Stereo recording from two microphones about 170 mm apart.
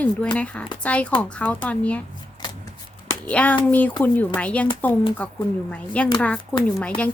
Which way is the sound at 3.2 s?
10° left (ahead or behind).